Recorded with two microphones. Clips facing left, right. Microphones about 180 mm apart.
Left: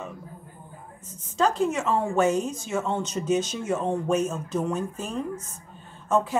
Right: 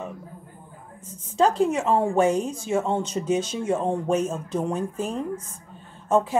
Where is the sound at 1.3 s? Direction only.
30° right (ahead or behind).